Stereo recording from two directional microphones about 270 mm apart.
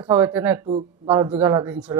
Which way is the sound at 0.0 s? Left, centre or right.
Centre.